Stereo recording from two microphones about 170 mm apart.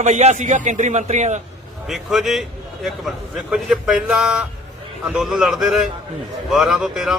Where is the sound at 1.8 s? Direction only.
Centre (ahead or behind).